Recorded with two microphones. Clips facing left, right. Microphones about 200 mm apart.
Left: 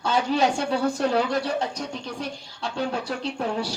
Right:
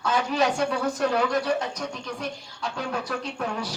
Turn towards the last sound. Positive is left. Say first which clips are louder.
# left 3 dB
turn(degrees=30)  # may be behind; listen again after turning